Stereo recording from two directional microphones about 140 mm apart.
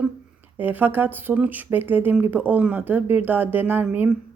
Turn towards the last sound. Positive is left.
turn(degrees=-15)  # may be behind; listen again after turning